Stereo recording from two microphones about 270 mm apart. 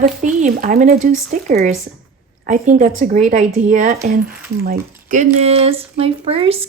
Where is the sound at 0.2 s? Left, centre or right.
Right.